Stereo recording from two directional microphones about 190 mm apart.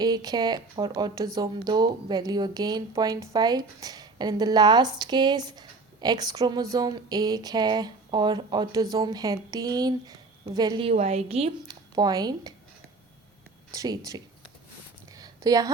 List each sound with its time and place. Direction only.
0.0 s speech: 20° right (ahead or behind)
13.7 s speech: 20° right (ahead or behind)
15.1 s a sound: 20° right (ahead or behind)